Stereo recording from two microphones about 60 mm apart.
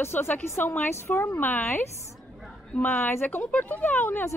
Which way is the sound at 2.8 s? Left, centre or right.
Left.